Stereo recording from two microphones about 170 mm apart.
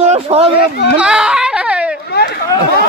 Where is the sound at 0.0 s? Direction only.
40° right (ahead or behind).